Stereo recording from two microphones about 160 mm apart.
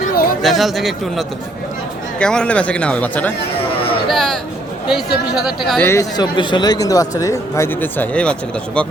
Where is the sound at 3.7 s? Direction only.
35° left (ahead or behind).